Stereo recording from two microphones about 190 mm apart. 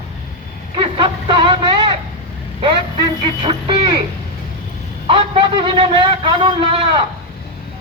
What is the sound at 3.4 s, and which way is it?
Speech, 25° right (ahead or behind).